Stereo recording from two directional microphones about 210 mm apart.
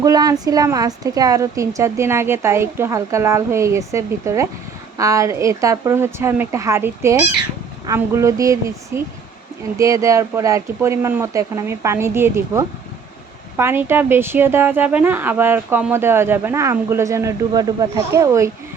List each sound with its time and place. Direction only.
0.0 s speech: 15° right (ahead or behind)